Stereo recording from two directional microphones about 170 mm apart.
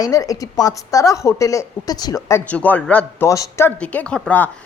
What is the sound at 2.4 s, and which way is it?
Speech, 10° left (ahead or behind).